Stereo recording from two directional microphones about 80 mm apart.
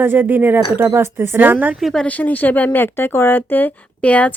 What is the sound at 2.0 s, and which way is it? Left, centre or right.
Speech, centre.